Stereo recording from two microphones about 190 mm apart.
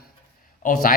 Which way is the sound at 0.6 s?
50° left (ahead or behind).